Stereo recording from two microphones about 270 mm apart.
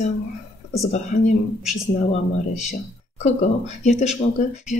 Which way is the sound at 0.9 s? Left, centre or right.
Left.